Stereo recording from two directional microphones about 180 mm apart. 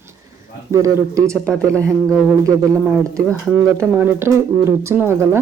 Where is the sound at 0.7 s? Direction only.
15° right (ahead or behind).